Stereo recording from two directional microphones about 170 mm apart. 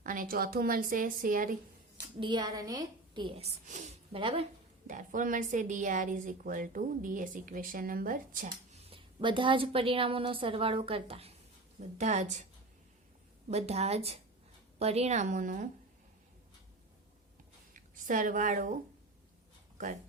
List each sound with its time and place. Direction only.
0.0 s a woman's voice: 55° right (ahead or behind)
2.2 s a woman's voice: 25° right (ahead or behind); by 4.2 s 45° right (ahead or behind)
4.2 s a woman's voice: 30° right (ahead or behind)
4.9 s a woman's voice: 50° right (ahead or behind)
8.8 s a woman's voice: 30° right (ahead or behind)
13.5 s a woman's voice: 40° right (ahead or behind)
17.7 s a woman's voice: 50° right (ahead or behind)